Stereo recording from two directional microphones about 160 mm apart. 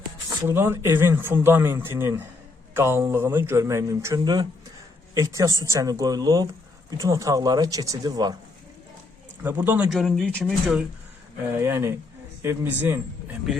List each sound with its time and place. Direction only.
0.3 s speech: 15° right (ahead or behind)
9.4 s speech: 10° right (ahead or behind)
11.5 s speech: 15° right (ahead or behind)